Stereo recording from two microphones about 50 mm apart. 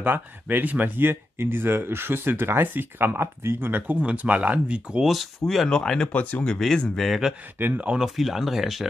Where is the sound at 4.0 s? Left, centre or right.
Right.